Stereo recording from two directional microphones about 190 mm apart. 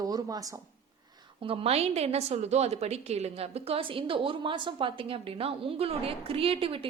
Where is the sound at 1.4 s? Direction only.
30° right (ahead or behind).